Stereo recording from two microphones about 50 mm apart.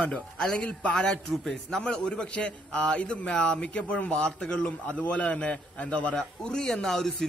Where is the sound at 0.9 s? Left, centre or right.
Centre; by 6.1 s left.